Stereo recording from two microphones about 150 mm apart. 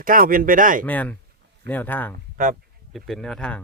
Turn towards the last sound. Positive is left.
turn(degrees=5)  # may be behind; listen again after turning